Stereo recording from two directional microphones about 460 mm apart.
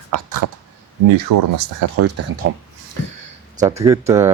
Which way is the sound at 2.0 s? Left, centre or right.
Right.